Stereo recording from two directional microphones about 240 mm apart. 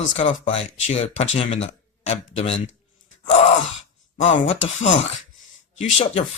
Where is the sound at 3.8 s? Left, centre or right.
Left.